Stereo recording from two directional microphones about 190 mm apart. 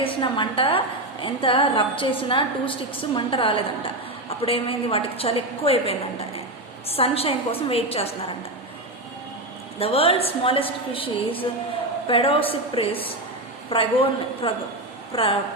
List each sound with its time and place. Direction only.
0.0 s a woman's voice: 25° left (ahead or behind)
9.7 s a woman's voice: 30° left (ahead or behind)